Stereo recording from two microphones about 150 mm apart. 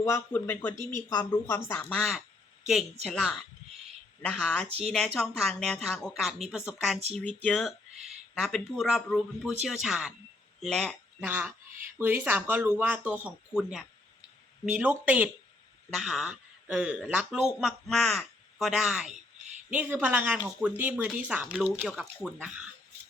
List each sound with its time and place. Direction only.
0.0 s speech: 15° left (ahead or behind)
1.9 s speech: 5° left (ahead or behind)
4.8 s speech: centre (ahead or behind)
11.3 s speech: 15° right (ahead or behind)